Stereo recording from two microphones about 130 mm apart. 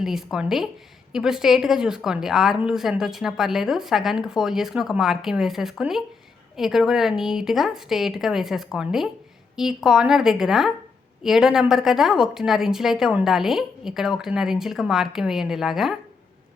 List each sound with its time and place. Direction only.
0.0 s a woman's voice: 5° right (ahead or behind)